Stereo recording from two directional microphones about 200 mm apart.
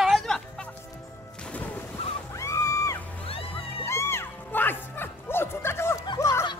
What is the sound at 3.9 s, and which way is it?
Music, 15° left (ahead or behind).